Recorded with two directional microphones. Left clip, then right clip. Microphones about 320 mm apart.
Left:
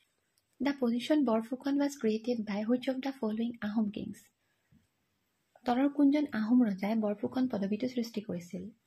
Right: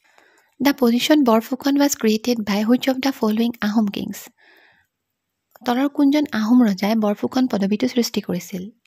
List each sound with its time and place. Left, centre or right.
0.6 s speech: right
5.6 s speech: right